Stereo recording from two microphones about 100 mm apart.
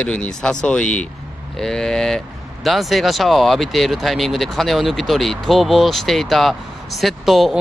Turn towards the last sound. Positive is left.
turn(degrees=0)  # may be behind; listen again after turning